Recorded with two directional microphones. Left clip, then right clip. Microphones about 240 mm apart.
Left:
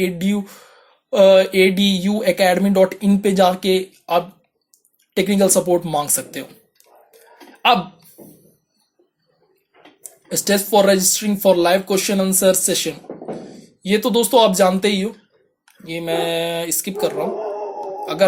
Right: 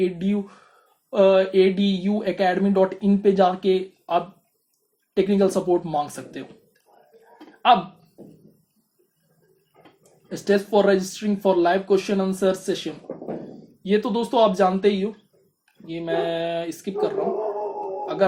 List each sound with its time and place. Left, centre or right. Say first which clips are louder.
0.0 s speech: left 3 dB; left
10.0 s speech: left 10 dB; left